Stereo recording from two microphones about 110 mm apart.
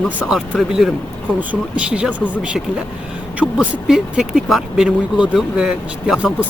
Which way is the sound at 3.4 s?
10° left (ahead or behind).